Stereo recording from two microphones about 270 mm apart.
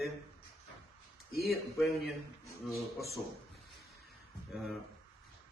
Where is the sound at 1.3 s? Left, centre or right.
Left.